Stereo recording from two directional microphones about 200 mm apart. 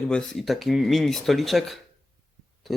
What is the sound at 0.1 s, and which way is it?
Speech, centre (ahead or behind).